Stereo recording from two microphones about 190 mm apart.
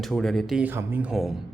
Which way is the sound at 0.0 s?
Centre (ahead or behind).